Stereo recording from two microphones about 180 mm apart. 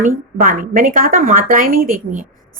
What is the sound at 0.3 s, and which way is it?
A woman's voice, 50° right (ahead or behind).